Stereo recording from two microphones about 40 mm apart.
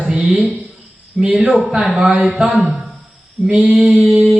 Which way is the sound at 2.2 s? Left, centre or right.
Centre.